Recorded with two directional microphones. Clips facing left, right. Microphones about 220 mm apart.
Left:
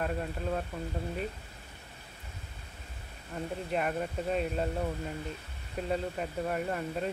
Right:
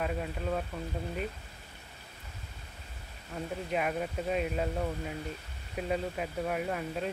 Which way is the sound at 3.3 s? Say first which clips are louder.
Even; centre (ahead or behind).